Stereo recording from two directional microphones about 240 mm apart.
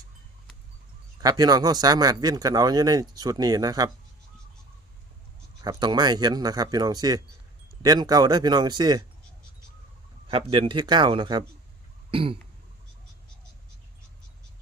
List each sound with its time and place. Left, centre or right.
1.2 s speech: centre
5.6 s speech: centre
10.2 s speech: right